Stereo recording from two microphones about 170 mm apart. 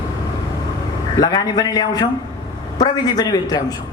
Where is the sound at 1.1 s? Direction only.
25° left (ahead or behind).